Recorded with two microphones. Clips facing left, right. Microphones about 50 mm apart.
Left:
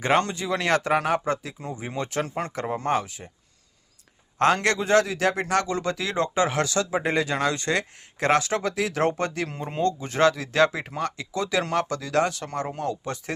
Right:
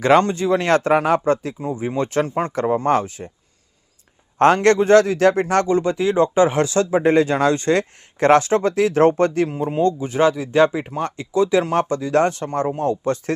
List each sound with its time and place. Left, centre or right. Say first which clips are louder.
0.2 s speech: right 7 dB; right
1.7 s speech: right 8 dB; right
2.0 s a man's voice: right 8 dB; right
4.4 s a man's voice: right 7 dB; right
5.6 s speech: right 9 dB; right
7.0 s speech: right 8 dB; right
9.5 s speech: right 7 dB; centre
11.0 s speech: right 9 dB; right
12.2 s speech: right 7 dB; right